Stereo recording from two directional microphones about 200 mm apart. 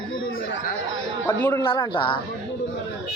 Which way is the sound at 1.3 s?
10° left (ahead or behind).